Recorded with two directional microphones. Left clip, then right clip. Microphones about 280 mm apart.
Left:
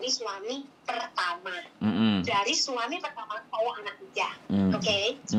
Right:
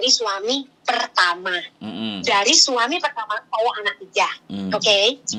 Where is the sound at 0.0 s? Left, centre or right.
Right.